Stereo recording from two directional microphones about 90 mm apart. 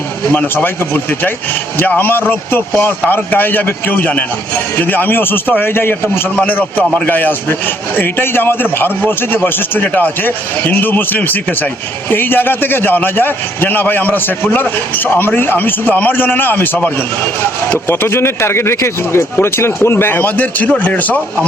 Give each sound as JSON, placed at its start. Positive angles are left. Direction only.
{"t": 0.3, "sound": "a man's voice", "side_deg": 25}
{"t": 17.7, "sound": "a man's voice", "side_deg": 25}